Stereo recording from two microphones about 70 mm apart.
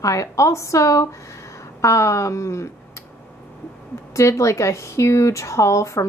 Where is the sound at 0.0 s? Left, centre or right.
Left.